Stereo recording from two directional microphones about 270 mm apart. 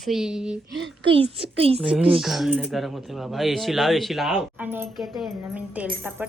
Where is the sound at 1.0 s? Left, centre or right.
Right.